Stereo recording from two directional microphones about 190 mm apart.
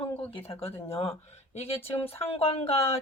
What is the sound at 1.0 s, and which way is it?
Speech, 35° left (ahead or behind).